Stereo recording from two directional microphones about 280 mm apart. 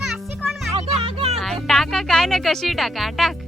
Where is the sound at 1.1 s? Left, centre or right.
Right.